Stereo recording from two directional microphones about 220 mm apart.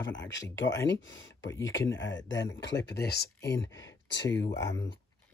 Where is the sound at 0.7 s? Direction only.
15° left (ahead or behind).